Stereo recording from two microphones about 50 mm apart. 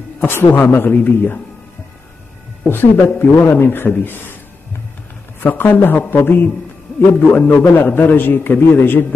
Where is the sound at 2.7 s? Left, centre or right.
Left.